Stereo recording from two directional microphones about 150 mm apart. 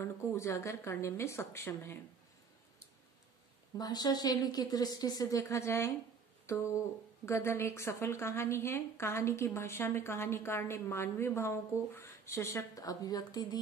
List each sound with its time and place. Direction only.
0.0 s a woman's voice: 20° left (ahead or behind)
3.7 s a woman's voice: 25° left (ahead or behind)
6.4 s a sound: 20° left (ahead or behind)
7.2 s a woman's voice: 20° left (ahead or behind)